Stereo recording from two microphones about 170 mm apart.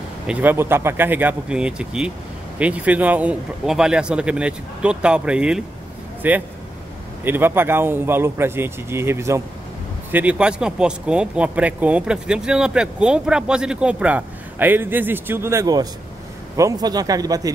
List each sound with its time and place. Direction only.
0.3 s speech: 10° right (ahead or behind)